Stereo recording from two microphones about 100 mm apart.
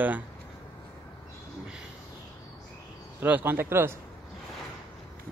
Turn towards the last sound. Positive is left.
turn(degrees=-25)  # may be behind; listen again after turning